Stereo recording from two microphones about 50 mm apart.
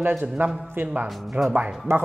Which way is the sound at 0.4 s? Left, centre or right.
Right.